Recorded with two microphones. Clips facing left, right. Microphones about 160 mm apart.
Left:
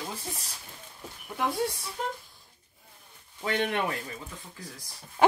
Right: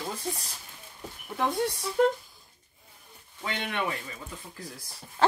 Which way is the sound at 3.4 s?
45° left (ahead or behind).